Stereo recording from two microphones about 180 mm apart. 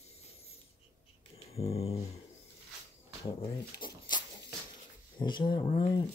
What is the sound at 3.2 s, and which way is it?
Speech, 30° left (ahead or behind).